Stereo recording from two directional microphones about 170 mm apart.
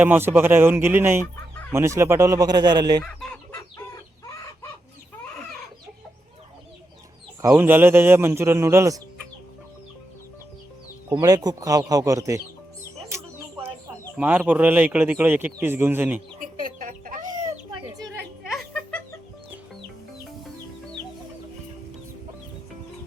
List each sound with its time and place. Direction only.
0.0 s a man's voice: 10° right (ahead or behind)
3.0 s chicken: 5° left (ahead or behind)
3.5 s chicken: 15° left (ahead or behind)
7.6 s a man's voice: 10° right (ahead or behind)
11.2 s speech: 20° right (ahead or behind)
13.1 s a sound: 15° right (ahead or behind)
14.2 s a man's voice: 10° right (ahead or behind)
16.4 s chicken: 55° right (ahead or behind)
18.5 s laughter: 10° left (ahead or behind)